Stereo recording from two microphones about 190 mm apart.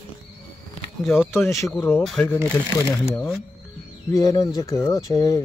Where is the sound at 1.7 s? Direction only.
10° left (ahead or behind).